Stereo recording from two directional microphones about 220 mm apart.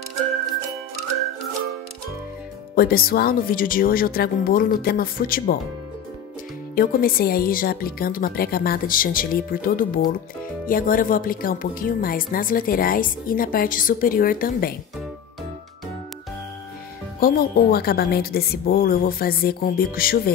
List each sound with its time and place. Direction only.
2.7 s a woman's voice: 40° left (ahead or behind)
6.7 s a woman's voice: 40° left (ahead or behind)
17.2 s a woman's voice: 40° left (ahead or behind)